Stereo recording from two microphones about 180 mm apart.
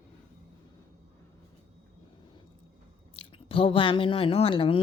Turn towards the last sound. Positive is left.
turn(degrees=30)  # may be behind; listen again after turning